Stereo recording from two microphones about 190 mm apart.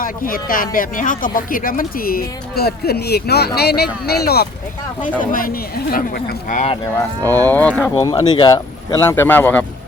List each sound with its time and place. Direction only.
0.0 s speech: 50° left (ahead or behind)
7.3 s speech: 10° left (ahead or behind)
7.9 s speech: 20° left (ahead or behind)